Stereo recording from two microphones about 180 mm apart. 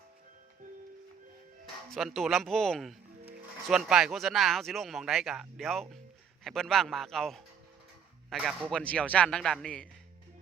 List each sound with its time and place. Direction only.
0.6 s music: 45° right (ahead or behind)
1.9 s speech: centre (ahead or behind)